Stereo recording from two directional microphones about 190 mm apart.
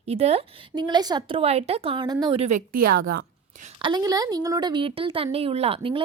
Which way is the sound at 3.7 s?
20° right (ahead or behind).